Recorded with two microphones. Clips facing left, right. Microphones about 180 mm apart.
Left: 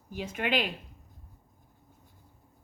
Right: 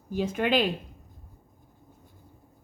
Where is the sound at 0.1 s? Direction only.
35° right (ahead or behind).